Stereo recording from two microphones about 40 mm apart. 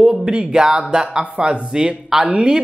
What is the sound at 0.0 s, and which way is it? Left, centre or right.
Speech, centre.